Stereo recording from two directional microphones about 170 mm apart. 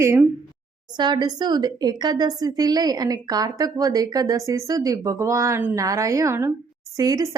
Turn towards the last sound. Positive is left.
turn(degrees=-20)  # may be behind; listen again after turning